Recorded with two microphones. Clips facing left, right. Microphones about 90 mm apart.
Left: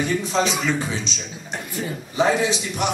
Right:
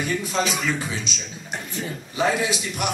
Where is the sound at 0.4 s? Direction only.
5° left (ahead or behind).